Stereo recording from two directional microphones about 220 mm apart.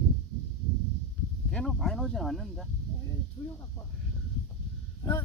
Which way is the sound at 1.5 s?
Centre (ahead or behind).